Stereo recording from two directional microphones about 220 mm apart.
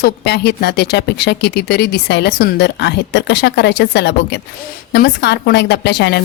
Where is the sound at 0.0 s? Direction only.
45° left (ahead or behind).